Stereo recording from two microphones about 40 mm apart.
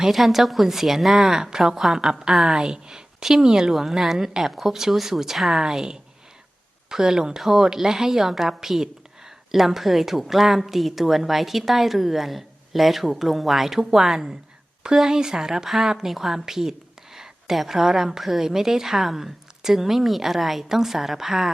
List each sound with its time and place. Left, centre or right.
0.1 s a woman's voice: centre